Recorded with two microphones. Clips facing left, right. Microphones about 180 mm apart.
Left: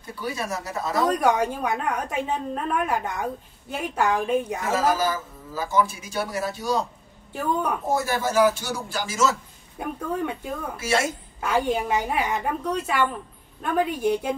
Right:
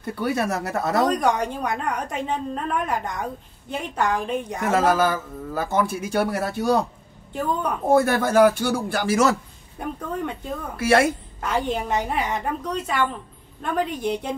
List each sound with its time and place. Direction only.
0.0 s a man's voice: 60° right (ahead or behind)
1.0 s a woman's voice: 10° left (ahead or behind)
4.6 s a man's voice: 60° right (ahead or behind)
7.3 s a woman's voice: 10° left (ahead or behind)
7.9 s a man's voice: 60° right (ahead or behind)
9.8 s a woman's voice: 5° left (ahead or behind)
10.8 s a man's voice: 55° right (ahead or behind)
11.4 s a woman's voice: 10° left (ahead or behind)